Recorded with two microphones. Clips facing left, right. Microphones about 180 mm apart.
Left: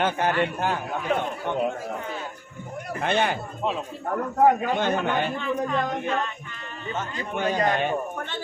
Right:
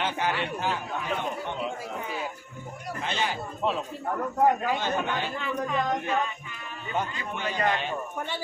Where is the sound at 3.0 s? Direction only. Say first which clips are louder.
Left 7 dB; 60° left (ahead or behind).